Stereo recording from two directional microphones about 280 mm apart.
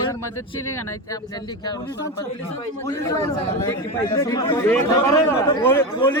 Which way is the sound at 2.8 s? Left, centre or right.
Centre.